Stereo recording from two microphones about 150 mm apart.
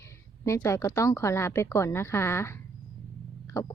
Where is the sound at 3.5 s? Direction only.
20° left (ahead or behind).